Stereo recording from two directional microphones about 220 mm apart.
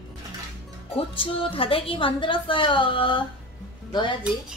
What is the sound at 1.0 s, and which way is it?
A woman's voice, 25° left (ahead or behind).